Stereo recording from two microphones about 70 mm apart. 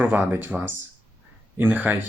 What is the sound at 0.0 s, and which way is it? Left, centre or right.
Speech, right.